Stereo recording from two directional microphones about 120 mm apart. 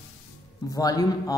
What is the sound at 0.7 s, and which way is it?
Speech, 30° left (ahead or behind).